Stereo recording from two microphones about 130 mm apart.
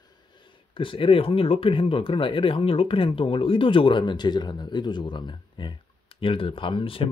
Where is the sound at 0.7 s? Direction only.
40° left (ahead or behind).